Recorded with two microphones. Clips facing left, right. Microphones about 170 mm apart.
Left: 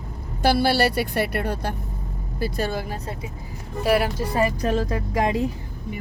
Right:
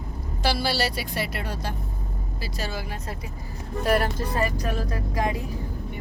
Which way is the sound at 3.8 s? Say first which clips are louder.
Left 2 dB; 10° left (ahead or behind).